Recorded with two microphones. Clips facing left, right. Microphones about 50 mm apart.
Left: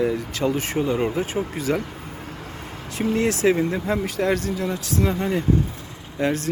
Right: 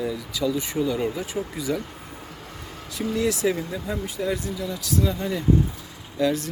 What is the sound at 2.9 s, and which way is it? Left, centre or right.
Speech, left.